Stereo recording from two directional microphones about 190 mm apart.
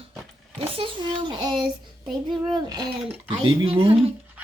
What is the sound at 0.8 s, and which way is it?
Speech, 25° right (ahead or behind).